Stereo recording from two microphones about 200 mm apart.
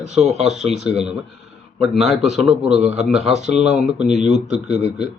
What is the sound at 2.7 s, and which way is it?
Speech, 35° right (ahead or behind).